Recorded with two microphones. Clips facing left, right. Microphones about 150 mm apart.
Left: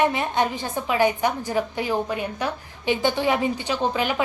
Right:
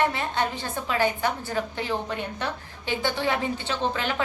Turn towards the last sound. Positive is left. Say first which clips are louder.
# left 4 dB
turn(degrees=15)  # may be behind; listen again after turning